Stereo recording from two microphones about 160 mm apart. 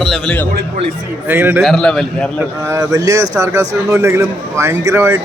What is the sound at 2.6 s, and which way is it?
A man's voice, 20° right (ahead or behind).